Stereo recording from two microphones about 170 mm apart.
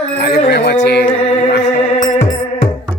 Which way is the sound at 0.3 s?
75° left (ahead or behind).